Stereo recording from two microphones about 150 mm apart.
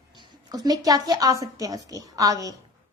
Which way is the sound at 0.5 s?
25° right (ahead or behind).